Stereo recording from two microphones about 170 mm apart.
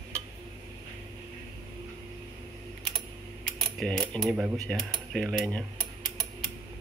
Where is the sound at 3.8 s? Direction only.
5° left (ahead or behind).